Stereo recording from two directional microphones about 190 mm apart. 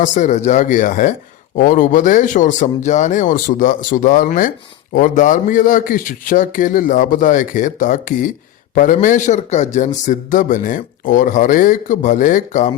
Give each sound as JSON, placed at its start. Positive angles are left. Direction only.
{"t": 0.0, "sound": "a man's voice", "side_deg": 40}